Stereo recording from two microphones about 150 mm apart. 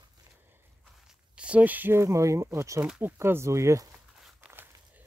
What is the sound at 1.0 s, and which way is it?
Speech, 5° right (ahead or behind).